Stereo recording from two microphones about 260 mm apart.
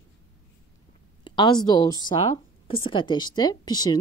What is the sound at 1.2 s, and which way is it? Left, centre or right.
A woman's voice, centre.